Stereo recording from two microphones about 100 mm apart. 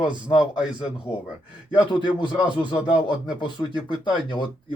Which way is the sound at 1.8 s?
50° left (ahead or behind).